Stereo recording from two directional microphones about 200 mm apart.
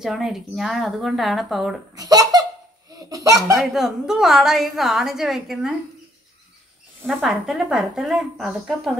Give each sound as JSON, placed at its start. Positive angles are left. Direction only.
{"t": 0.0, "sound": "a woman's voice", "side_deg": 0}
{"t": 2.0, "sound": "baby laughter", "side_deg": -20}
{"t": 3.0, "sound": "a sound", "side_deg": -20}
{"t": 3.5, "sound": "a woman's voice", "side_deg": 0}
{"t": 7.1, "sound": "a woman's voice", "side_deg": 0}